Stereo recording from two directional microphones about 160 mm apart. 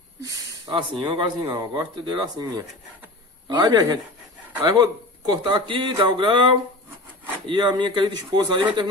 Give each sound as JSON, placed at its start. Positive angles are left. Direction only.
{"t": 0.2, "sound": "speech", "side_deg": -25}